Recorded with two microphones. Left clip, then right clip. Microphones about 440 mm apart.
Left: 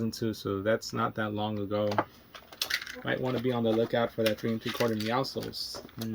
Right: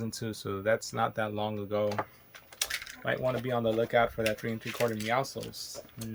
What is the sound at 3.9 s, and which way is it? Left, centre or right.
Speech, centre.